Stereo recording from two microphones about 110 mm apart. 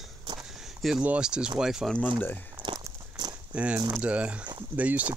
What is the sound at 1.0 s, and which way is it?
Speech, 10° right (ahead or behind).